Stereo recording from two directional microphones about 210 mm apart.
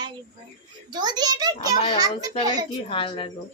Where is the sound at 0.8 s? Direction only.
20° right (ahead or behind).